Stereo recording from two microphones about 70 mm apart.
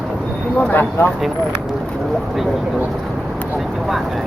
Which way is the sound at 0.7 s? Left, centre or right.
Left.